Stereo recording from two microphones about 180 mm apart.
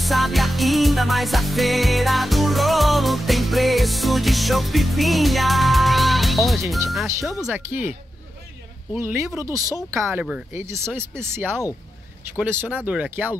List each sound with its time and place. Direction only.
0.0 s music: centre (ahead or behind)
7.4 s speech: 10° right (ahead or behind)
8.9 s speech: 15° right (ahead or behind)